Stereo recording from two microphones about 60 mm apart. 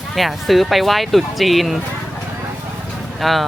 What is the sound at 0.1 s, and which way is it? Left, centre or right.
Speech, centre.